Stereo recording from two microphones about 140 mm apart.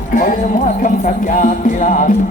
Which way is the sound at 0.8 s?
65° left (ahead or behind).